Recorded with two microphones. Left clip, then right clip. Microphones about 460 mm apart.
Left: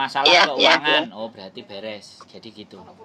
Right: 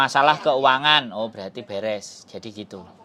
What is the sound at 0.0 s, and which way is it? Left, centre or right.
Speech, right.